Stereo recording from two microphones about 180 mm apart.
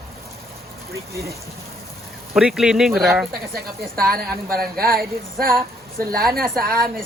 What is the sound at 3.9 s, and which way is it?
A woman's voice, 55° right (ahead or behind).